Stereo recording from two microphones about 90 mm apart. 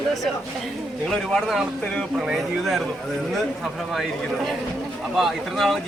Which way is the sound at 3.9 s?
Centre (ahead or behind).